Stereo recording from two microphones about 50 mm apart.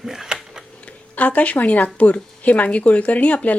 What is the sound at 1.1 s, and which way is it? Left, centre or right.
Speech, left.